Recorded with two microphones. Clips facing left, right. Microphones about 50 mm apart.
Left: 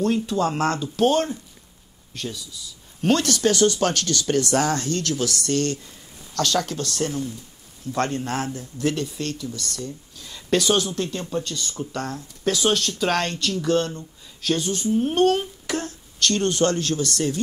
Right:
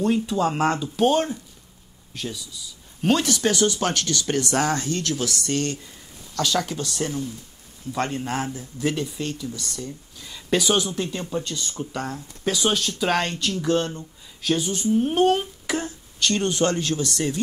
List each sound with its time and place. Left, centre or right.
0.0 s speech: centre
0.7 s speech: centre; by 5.8 s right
6.3 s speech: centre
10.2 s speech: centre
11.5 s speech: centre